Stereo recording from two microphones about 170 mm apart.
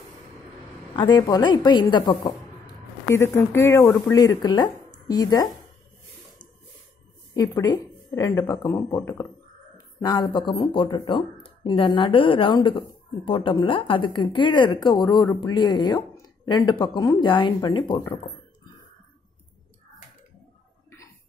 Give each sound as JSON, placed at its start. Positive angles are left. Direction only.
{"t": 0.9, "sound": "speech", "side_deg": 25}
{"t": 2.6, "sound": "speech", "side_deg": 15}
{"t": 7.3, "sound": "speech", "side_deg": 20}
{"t": 18.0, "sound": "a sound", "side_deg": 25}